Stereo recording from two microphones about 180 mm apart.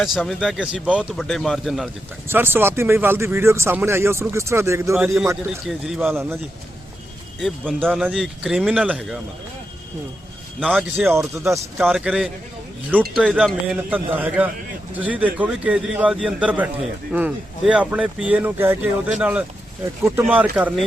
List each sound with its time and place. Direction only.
0.0 s speech: centre (ahead or behind)
2.2 s speech: 10° right (ahead or behind)
5.5 s speech: 5° right (ahead or behind)
7.3 s speech: centre (ahead or behind)
11.0 s speech: 5° right (ahead or behind)